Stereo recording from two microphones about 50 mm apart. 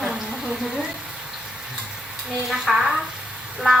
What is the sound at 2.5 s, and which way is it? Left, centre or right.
Speech, centre.